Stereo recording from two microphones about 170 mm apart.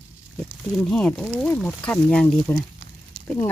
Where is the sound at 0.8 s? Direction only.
5° left (ahead or behind).